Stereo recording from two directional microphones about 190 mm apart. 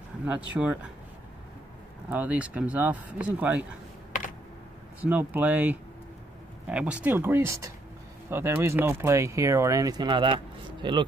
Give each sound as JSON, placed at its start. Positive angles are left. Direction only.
{"t": 0.3, "sound": "speech", "side_deg": -5}
{"t": 2.0, "sound": "speech", "side_deg": -10}
{"t": 5.0, "sound": "speech", "side_deg": -10}